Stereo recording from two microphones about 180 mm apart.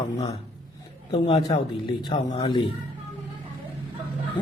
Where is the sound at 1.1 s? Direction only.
30° left (ahead or behind).